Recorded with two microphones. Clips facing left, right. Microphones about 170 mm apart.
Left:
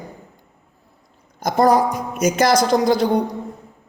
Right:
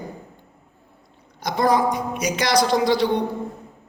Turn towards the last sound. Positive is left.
turn(degrees=45)  # may be behind; listen again after turning